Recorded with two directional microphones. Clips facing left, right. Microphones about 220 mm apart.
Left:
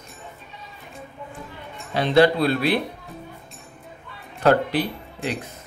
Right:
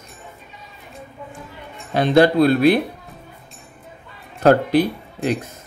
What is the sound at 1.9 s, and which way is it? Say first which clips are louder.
Speech: right 3 dB; 45° right (ahead or behind).